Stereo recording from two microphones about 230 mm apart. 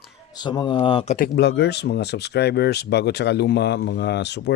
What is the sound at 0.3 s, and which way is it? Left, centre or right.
Speech, centre.